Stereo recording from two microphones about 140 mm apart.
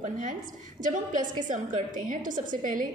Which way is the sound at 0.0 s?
65° right (ahead or behind).